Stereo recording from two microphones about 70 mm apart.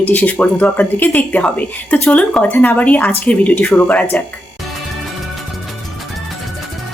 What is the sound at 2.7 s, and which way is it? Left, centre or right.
A woman's voice, left.